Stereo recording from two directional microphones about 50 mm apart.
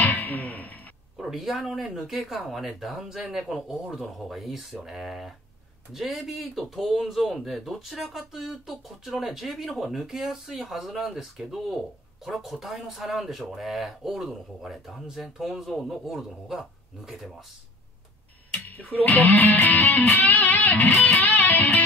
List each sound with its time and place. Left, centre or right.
0.0 s music: left
1.3 s a man's voice: centre
18.9 s music: left